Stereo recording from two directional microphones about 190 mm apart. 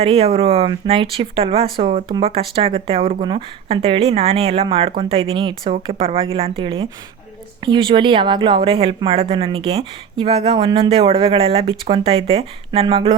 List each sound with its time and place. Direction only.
0.0 s speech: 30° right (ahead or behind)